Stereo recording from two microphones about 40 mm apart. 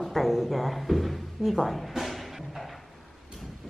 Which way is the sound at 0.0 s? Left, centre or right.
Centre.